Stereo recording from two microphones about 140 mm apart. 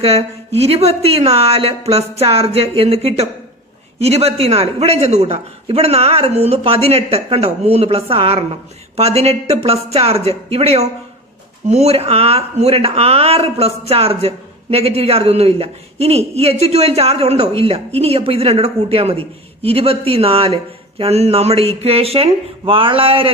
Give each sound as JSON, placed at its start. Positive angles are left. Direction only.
{"t": 0.0, "sound": "speech", "side_deg": -45}